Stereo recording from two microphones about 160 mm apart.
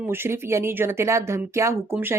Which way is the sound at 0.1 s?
15° right (ahead or behind).